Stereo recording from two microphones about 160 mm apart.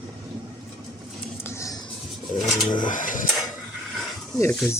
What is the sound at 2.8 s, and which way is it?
Mechanisms, 55° left (ahead or behind).